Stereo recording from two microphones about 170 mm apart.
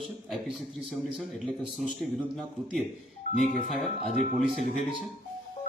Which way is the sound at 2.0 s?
Centre (ahead or behind).